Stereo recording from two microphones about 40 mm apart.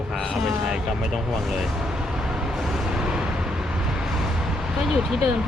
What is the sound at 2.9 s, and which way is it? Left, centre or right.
Vehicle, centre.